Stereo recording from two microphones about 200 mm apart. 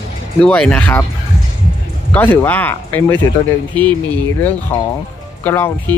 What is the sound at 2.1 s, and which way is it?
Speech, 10° left (ahead or behind).